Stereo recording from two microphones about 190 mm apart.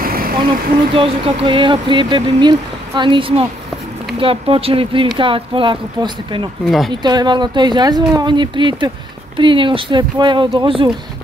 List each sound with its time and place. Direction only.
0.0 s vehicle: 50° right (ahead or behind)
0.9 s speech: 30° right (ahead or behind)
6.6 s speech: centre (ahead or behind)
7.0 s speech: 20° right (ahead or behind)